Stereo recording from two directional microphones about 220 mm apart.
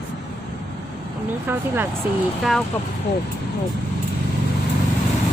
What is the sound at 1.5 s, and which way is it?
Speech, 10° right (ahead or behind).